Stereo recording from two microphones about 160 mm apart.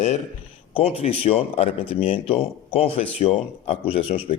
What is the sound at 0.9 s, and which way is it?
Speech, 35° left (ahead or behind).